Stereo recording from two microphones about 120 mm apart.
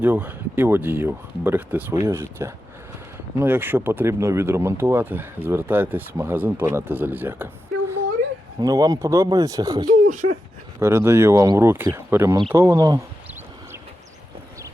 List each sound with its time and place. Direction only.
0.0 s speech: 15° right (ahead or behind)
8.6 s speech: 30° right (ahead or behind)
10.1 s speech: 90° right
10.8 s speech: 20° right (ahead or behind)